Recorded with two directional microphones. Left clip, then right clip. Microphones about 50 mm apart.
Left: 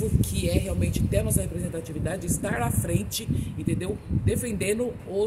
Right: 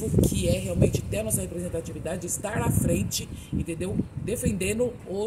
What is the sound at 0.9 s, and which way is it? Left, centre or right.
A woman's voice, left.